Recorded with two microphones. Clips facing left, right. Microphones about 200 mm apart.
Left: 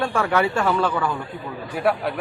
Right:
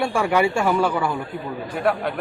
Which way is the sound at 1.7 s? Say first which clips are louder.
Left 1 dB; 5° left (ahead or behind).